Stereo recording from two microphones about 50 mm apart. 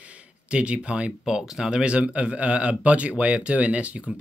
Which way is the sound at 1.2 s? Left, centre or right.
Centre.